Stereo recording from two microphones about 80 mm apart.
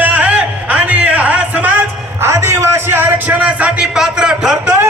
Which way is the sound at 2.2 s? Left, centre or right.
Right.